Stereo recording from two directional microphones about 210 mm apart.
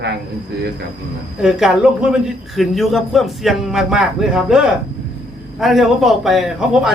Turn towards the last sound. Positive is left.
turn(degrees=0)  # may be behind; listen again after turning